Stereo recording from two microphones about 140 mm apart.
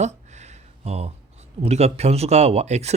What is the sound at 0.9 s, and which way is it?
Speech, 45° right (ahead or behind).